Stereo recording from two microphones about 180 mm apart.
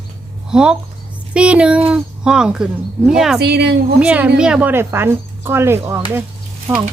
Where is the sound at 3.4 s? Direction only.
65° right (ahead or behind).